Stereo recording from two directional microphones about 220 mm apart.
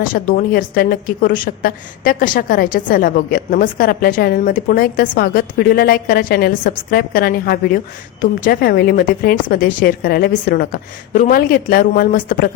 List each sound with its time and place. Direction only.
0.0 s a woman's voice: 40° left (ahead or behind)